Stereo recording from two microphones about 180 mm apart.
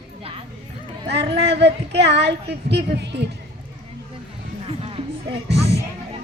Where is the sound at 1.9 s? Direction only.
70° right (ahead or behind).